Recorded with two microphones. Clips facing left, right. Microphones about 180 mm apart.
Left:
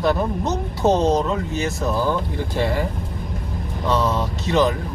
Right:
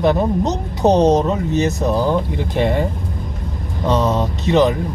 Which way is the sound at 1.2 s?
40° right (ahead or behind).